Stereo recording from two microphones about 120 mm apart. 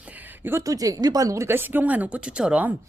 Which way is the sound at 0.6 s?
30° right (ahead or behind).